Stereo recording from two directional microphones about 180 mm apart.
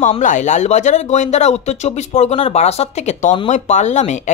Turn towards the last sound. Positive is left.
turn(degrees=40)  # may be behind; listen again after turning